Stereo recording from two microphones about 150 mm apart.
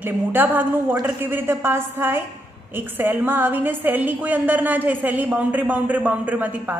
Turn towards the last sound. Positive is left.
turn(degrees=-10)  # may be behind; listen again after turning